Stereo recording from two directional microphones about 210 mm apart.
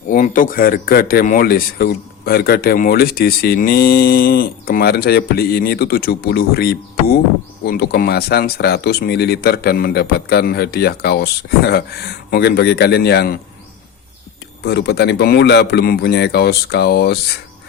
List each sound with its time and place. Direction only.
0.1 s speech: 40° left (ahead or behind)
14.6 s speech: 55° left (ahead or behind)